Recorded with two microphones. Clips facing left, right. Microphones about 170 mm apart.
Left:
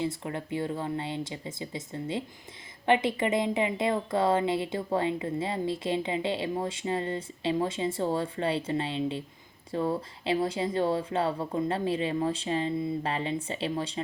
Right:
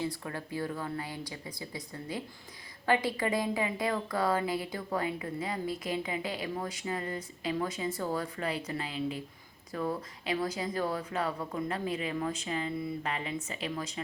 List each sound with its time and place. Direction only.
0.0 s a woman's voice: 20° left (ahead or behind)